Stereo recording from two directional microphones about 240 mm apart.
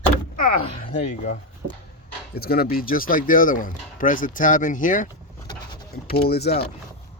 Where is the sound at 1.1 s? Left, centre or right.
Left.